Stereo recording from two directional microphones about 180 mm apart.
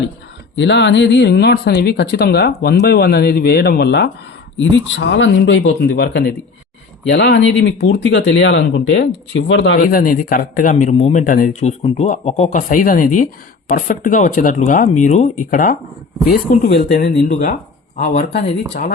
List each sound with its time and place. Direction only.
0.5 s speech: 80° left
4.7 s speech: 90° left
9.7 s speech: 50° left (ahead or behind)
11.2 s speech: 50° left (ahead or behind)